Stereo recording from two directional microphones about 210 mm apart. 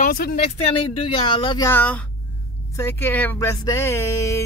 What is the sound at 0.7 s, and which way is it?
Speech, 25° left (ahead or behind).